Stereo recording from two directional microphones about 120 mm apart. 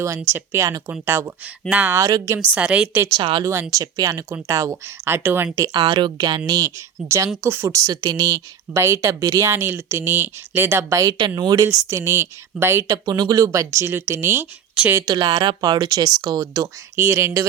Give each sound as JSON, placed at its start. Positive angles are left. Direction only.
{"t": 0.2, "sound": "a woman's voice", "side_deg": -20}
{"t": 2.0, "sound": "speech", "side_deg": -25}
{"t": 2.4, "sound": "a woman's voice", "side_deg": -10}
{"t": 3.2, "sound": "speech", "side_deg": -45}
{"t": 3.4, "sound": "speech", "side_deg": -25}
{"t": 5.5, "sound": "speech", "side_deg": -35}
{"t": 13.1, "sound": "a woman's voice", "side_deg": -35}
{"t": 15.0, "sound": "speech", "side_deg": -35}
{"t": 16.9, "sound": "speech", "side_deg": -20}